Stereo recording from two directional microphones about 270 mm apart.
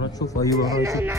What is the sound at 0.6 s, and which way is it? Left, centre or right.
Speech, centre.